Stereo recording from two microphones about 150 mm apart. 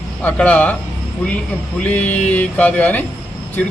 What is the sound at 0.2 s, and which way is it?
Speech, 10° left (ahead or behind).